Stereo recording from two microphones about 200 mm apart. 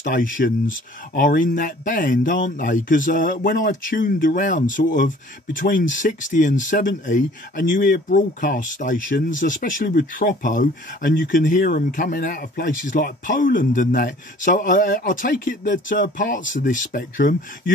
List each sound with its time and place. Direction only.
0.0 s speech: 45° left (ahead or behind)